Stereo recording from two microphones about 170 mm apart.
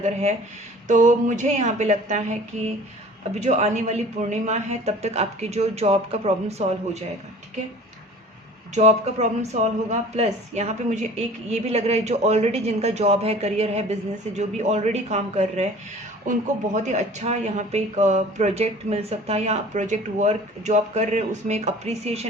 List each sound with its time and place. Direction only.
0.0 s speech: 40° right (ahead or behind)
8.7 s speech: 40° right (ahead or behind)